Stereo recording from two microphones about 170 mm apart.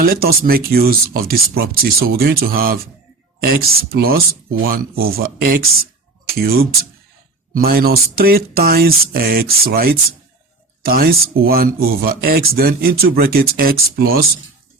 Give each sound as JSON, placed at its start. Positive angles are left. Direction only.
{"t": 0.0, "sound": "speech", "side_deg": -60}